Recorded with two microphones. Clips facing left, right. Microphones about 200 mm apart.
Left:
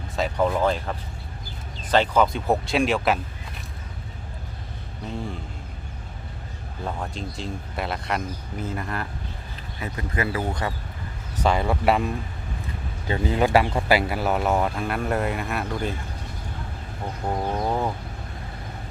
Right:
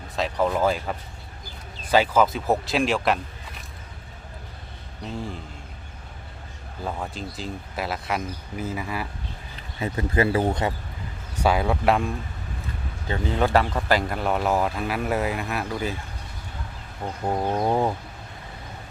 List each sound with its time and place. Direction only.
0.2 s speech: centre (ahead or behind)
6.8 s speech: centre (ahead or behind)
9.8 s speech: 25° right (ahead or behind)
11.4 s speech: centre (ahead or behind)
17.2 s bird: 15° right (ahead or behind)